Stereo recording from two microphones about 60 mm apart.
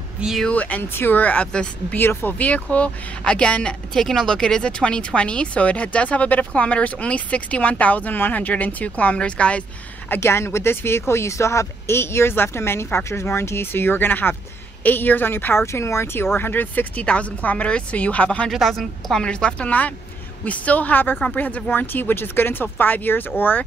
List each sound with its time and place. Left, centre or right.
0.5 s speech: left
1.5 s speech: centre
2.0 s speech: left
10.2 s speech: left
18.5 s a woman's voice: centre
19.2 s speech: centre